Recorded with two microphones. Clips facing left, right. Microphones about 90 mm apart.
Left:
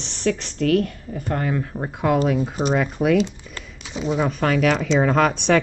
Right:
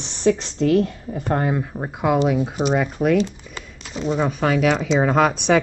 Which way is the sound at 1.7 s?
5° right (ahead or behind).